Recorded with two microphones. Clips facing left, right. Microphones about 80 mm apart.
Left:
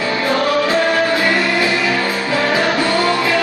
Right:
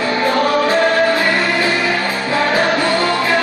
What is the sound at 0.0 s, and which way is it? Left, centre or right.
Music, right.